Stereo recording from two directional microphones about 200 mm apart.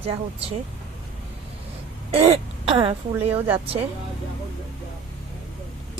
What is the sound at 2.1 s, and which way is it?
Speech, 30° right (ahead or behind).